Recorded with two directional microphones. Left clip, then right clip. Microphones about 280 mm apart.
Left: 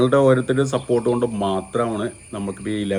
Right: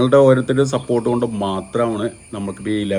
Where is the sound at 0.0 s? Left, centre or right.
Centre.